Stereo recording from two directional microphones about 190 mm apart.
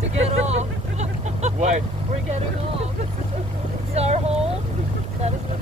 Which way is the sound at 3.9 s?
35° right (ahead or behind).